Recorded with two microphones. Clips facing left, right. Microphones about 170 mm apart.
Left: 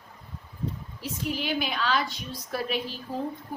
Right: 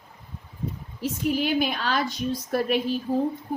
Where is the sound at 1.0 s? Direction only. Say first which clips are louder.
Right 7 dB; 50° right (ahead or behind).